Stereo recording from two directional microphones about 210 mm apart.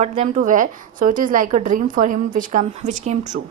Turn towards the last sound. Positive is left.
turn(degrees=-35)  # may be behind; listen again after turning